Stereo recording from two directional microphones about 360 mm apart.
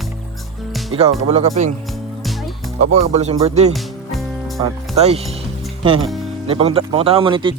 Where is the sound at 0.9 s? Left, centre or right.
Centre.